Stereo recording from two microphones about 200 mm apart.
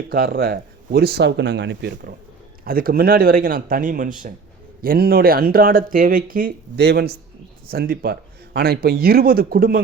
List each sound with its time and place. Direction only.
0.1 s speech: 45° right (ahead or behind)
2.6 s speech: 45° right (ahead or behind)